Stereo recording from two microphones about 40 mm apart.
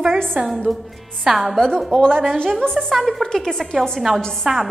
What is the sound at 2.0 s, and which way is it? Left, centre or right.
Speech, centre.